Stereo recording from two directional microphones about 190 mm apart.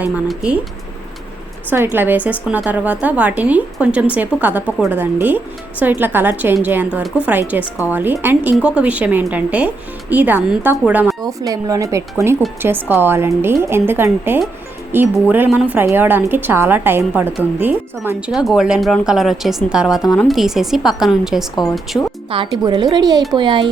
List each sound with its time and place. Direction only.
0.0 s speech: 5° right (ahead or behind)
1.7 s speech: 10° right (ahead or behind)
11.2 s a woman's voice: 15° right (ahead or behind); by 21.4 s centre (ahead or behind)
21.9 s speech: 10° left (ahead or behind)
22.3 s speech: 25° right (ahead or behind)